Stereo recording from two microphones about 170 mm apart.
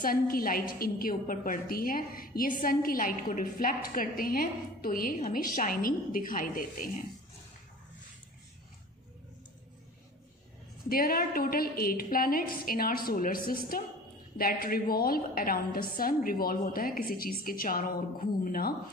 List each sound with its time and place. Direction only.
0.0 s a woman's voice: 60° left (ahead or behind)
10.8 s a woman's voice: 60° left (ahead or behind)